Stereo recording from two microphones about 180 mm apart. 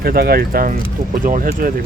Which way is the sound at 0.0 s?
60° right (ahead or behind).